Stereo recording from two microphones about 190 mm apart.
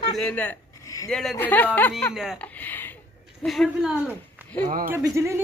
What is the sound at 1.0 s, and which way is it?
Speech, centre (ahead or behind).